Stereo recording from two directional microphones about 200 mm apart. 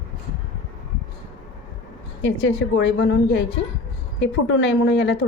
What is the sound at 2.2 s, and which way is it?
A woman's voice, 65° left (ahead or behind).